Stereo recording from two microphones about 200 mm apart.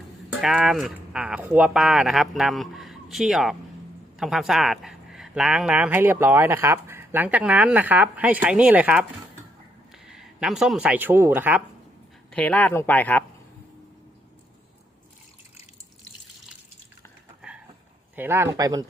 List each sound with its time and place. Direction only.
0.4 s speech: centre (ahead or behind)
12.3 s speech: 5° left (ahead or behind)
18.2 s speech: 10° right (ahead or behind)